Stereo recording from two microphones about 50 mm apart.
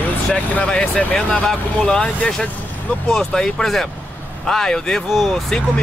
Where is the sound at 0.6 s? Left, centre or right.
Centre.